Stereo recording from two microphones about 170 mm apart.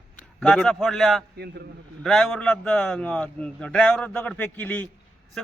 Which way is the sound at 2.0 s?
5° left (ahead or behind).